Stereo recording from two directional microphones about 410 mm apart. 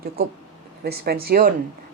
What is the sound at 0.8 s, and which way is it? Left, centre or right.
Speech, right.